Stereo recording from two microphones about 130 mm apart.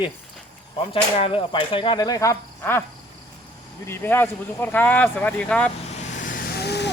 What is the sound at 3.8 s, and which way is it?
Speech, 20° left (ahead or behind).